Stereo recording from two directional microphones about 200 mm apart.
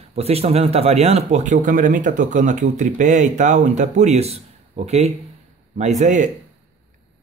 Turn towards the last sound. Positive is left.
turn(degrees=-40)  # may be behind; listen again after turning